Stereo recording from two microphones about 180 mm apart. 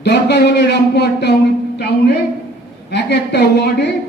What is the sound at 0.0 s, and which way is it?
A man's voice, 70° left (ahead or behind).